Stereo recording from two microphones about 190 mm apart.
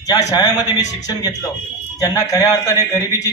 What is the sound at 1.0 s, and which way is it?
A man's voice, 20° left (ahead or behind).